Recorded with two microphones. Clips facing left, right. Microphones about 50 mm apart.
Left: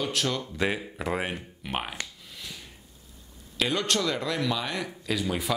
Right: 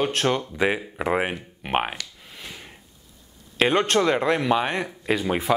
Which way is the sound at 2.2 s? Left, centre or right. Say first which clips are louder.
Right 3 dB; right.